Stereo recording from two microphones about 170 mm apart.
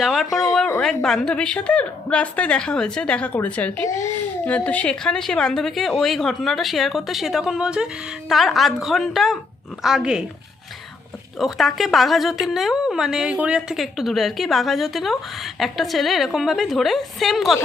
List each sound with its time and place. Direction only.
0.0 s a woman's voice: centre (ahead or behind)
11.3 s a woman's voice: centre (ahead or behind)